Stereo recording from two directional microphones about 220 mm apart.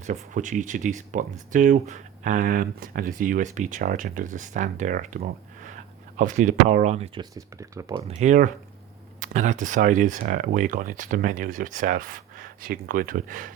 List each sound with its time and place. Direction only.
0.0 s speech: 35° right (ahead or behind); by 8.0 s 15° right (ahead or behind)
8.0 s speech: 30° right (ahead or behind)